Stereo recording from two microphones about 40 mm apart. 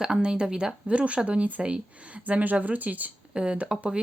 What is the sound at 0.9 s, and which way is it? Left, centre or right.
Speech, right.